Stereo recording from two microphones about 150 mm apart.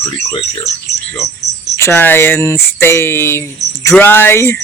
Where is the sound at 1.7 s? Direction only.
15° left (ahead or behind).